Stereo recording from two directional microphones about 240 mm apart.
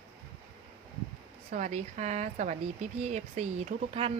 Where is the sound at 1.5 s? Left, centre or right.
Right.